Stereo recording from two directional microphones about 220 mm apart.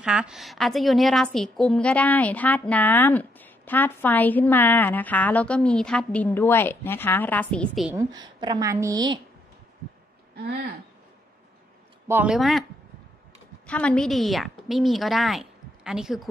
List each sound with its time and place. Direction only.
0.0 s a woman's voice: 5° right (ahead or behind)
7.9 s a woman's voice: 15° right (ahead or behind)
10.3 s speech: 45° right (ahead or behind)
12.1 s speech: 5° right (ahead or behind)
13.7 s a woman's voice: 5° left (ahead or behind)